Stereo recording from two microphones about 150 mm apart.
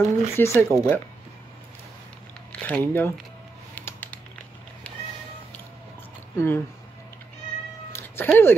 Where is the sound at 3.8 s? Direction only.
10° left (ahead or behind).